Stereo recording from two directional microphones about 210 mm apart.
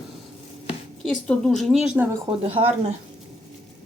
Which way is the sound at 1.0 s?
Centre (ahead or behind).